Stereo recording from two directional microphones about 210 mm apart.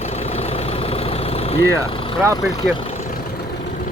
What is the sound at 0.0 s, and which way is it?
Vehicle, 30° left (ahead or behind).